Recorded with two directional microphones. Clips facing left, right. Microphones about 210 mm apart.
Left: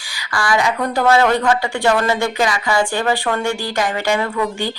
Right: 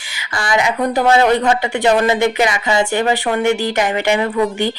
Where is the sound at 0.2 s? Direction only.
20° right (ahead or behind).